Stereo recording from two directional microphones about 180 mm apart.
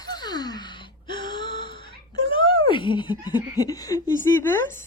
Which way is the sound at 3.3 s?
20° left (ahead or behind).